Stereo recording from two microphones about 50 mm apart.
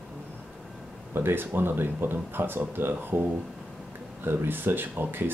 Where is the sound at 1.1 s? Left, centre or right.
Right.